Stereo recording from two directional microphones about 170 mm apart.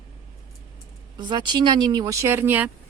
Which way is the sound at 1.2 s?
25° right (ahead or behind).